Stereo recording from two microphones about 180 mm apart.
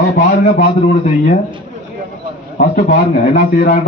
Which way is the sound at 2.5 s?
55° left (ahead or behind).